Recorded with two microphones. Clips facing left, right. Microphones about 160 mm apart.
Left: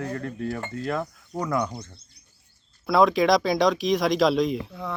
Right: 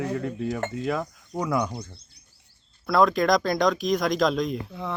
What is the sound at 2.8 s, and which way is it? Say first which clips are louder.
Speech: left 1 dB; centre (ahead or behind).